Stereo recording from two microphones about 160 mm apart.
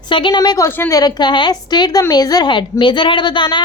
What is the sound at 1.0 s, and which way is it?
A woman's voice, 25° left (ahead or behind).